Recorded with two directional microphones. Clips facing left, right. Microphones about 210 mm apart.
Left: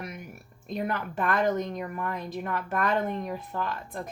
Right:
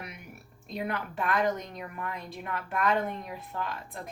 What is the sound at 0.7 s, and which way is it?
A woman's voice, 50° left (ahead or behind).